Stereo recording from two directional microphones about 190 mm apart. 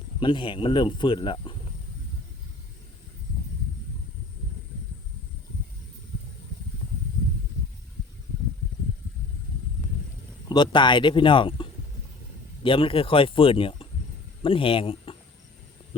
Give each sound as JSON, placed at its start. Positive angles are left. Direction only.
{"t": 0.2, "sound": "speech", "side_deg": 25}
{"t": 10.5, "sound": "speech", "side_deg": 25}